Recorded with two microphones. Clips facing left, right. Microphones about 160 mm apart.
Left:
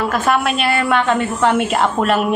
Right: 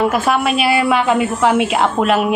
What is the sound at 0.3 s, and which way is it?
A woman's voice, centre (ahead or behind).